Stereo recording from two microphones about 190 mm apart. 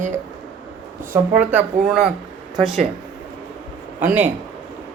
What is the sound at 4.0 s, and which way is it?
Speech, 10° right (ahead or behind).